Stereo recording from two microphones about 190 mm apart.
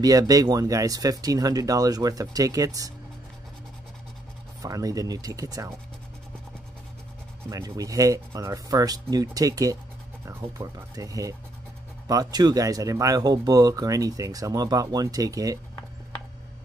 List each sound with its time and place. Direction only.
0.0 s speech: 20° right (ahead or behind)
4.6 s speech: 20° right (ahead or behind)
7.4 s speech: 20° right (ahead or behind)